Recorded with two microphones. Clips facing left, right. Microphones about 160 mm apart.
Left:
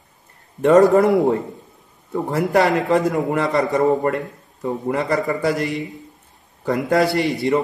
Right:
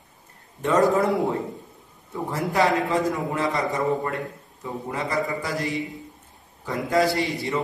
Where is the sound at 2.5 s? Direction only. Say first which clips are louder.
Left 5 dB; 65° left (ahead or behind).